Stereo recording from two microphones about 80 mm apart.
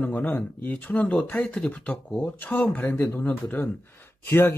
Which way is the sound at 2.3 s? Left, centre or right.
Left.